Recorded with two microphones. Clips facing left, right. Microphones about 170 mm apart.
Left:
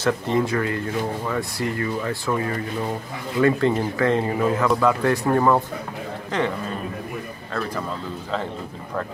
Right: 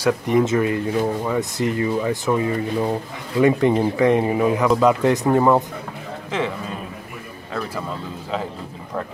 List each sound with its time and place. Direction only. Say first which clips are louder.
0.0 s speech: right 3 dB; 15° right (ahead or behind)